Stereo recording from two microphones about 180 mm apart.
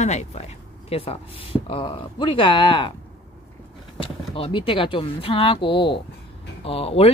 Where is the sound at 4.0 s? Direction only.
30° left (ahead or behind).